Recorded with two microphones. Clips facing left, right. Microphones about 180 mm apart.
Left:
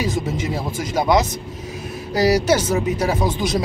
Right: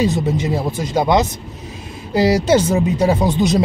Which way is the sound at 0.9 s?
25° right (ahead or behind).